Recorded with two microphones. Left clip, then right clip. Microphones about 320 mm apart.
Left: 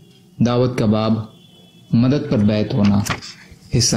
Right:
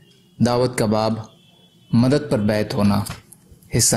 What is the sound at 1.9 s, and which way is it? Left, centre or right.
Speech, right.